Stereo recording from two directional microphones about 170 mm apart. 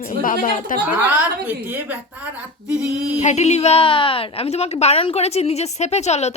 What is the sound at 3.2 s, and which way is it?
A woman's voice, 40° left (ahead or behind).